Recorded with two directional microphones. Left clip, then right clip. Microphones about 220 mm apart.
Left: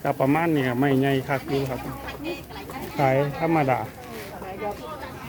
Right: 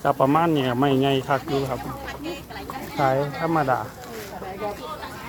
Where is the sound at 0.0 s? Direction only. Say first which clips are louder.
Right 3 dB; 5° right (ahead or behind).